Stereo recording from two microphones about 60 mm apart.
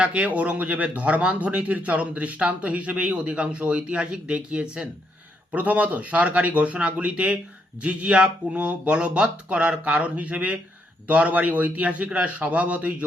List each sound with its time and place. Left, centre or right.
0.0 s speech: centre